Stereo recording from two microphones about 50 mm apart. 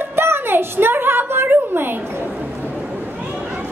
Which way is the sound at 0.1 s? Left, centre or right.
Right.